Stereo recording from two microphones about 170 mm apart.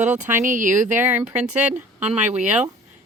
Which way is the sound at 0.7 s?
15° right (ahead or behind).